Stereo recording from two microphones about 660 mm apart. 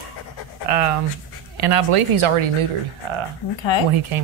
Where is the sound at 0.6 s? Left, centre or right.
Right.